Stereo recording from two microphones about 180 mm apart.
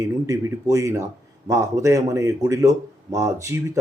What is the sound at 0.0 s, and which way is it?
Speech, 20° right (ahead or behind).